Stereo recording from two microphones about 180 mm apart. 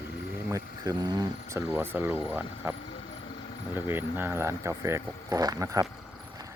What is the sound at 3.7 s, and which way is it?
Speech, 10° right (ahead or behind).